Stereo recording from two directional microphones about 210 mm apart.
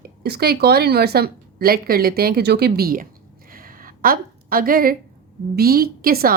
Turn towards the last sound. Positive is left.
turn(degrees=-45)  # may be behind; listen again after turning